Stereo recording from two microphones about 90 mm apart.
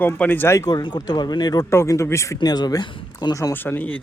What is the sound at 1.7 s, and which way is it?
Speech, 30° left (ahead or behind).